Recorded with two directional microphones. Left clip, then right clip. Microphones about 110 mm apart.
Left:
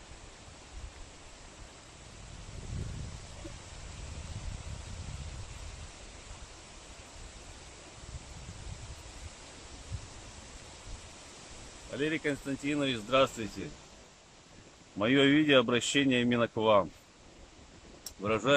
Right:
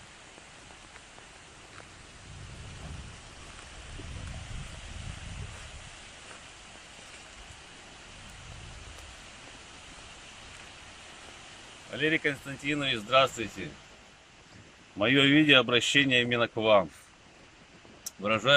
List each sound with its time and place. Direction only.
12.0 s speech: 15° left (ahead or behind)
15.0 s speech: 10° left (ahead or behind)
18.2 s speech: 15° left (ahead or behind)